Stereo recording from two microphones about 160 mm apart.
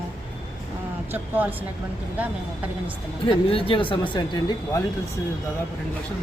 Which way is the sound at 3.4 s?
35° left (ahead or behind).